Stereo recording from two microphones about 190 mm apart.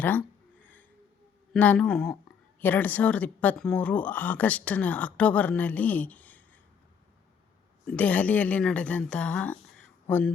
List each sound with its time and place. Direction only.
0.0 s a sound: 10° left (ahead or behind)
1.5 s speech: 5° left (ahead or behind)
7.9 s speech: 5° left (ahead or behind)